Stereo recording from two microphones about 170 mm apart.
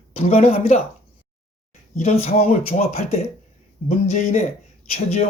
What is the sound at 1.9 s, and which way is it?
Speech, 40° left (ahead or behind).